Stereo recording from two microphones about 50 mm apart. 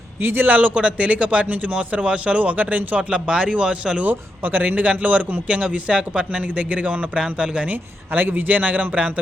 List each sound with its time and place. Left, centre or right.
0.2 s a man's voice: right
3.0 s a man's voice: centre
4.0 s a man's voice: right
4.6 s a man's voice: right
7.7 s a man's voice: right